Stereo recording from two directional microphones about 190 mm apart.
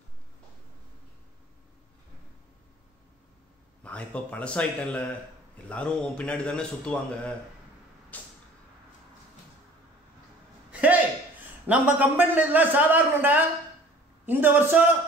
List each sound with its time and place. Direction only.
3.8 s a man's voice: 5° left (ahead or behind)
8.1 s vehicle: 10° left (ahead or behind)
10.7 s a sound: 10° right (ahead or behind)
11.6 s a man's voice: 10° right (ahead or behind)